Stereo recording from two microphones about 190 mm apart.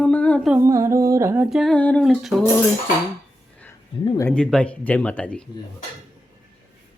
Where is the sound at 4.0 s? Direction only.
25° left (ahead or behind).